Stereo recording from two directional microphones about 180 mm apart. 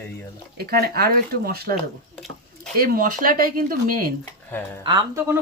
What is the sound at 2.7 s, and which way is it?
Speech, 55° right (ahead or behind).